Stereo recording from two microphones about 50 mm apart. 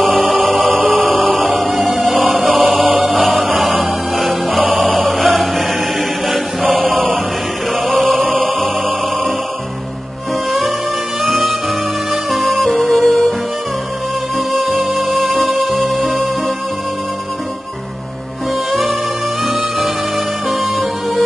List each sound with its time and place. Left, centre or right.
0.0 s music: centre
0.7 s music: right
1.0 s chant: centre
2.8 s mantra: centre
3.1 s chant: centre
3.4 s music: centre
4.7 s choir: centre
7.7 s chant: centre
8.5 s music: centre
11.2 s music: centre
14.5 s music: centre
18.7 s music: centre